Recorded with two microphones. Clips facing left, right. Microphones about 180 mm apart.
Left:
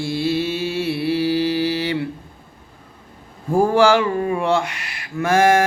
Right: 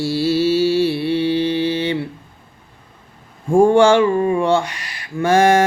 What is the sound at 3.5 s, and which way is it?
A man's voice, 25° right (ahead or behind).